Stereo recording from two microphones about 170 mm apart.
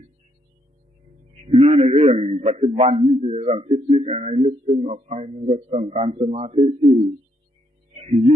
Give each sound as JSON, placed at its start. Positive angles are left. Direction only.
{"t": 1.3, "sound": "a man's voice", "side_deg": -35}
{"t": 7.9, "sound": "music", "side_deg": -35}